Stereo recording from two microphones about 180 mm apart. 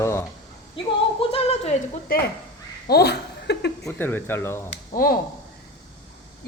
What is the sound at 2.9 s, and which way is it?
Speech, 65° left (ahead or behind).